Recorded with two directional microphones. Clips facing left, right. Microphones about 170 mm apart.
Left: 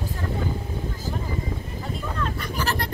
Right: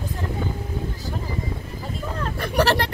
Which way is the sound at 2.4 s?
75° right (ahead or behind).